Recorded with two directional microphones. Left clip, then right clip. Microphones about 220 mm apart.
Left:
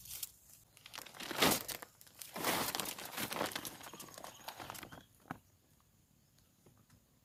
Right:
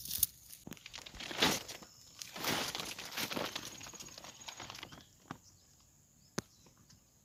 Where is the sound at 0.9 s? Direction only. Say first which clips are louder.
Even; 20° left (ahead or behind).